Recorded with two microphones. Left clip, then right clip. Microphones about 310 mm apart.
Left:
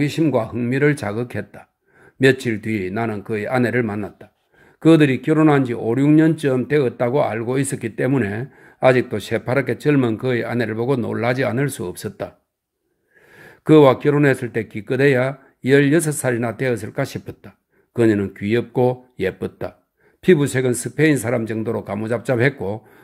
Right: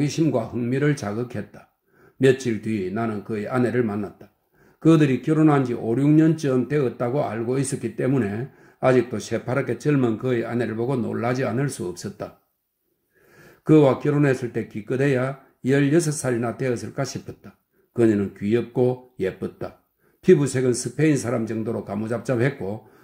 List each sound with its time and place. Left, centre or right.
0.1 s speech: left
2.4 s speech: left
13.7 s speech: left